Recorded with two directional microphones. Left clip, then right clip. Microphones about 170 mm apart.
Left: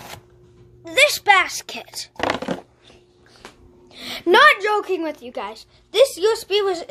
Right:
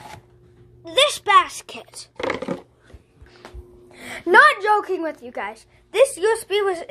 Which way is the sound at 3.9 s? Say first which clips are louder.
Right 1 dB; 10° left (ahead or behind).